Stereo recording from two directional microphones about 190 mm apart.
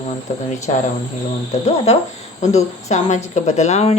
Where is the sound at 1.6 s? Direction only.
35° left (ahead or behind).